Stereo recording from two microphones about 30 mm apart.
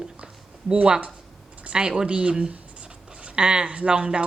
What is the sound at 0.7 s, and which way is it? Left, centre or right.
Speech, right.